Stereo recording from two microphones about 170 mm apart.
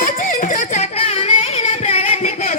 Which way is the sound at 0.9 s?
35° left (ahead or behind).